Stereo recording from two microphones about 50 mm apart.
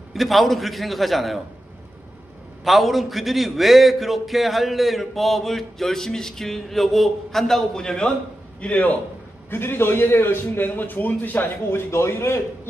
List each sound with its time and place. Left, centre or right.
0.1 s a man's voice: centre
2.6 s a man's voice: centre
8.5 s a man's voice: left
9.5 s a man's voice: left